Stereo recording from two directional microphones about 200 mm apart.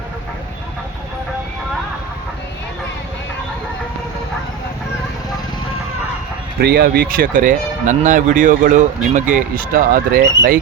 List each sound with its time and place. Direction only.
6.6 s speech: 50° right (ahead or behind)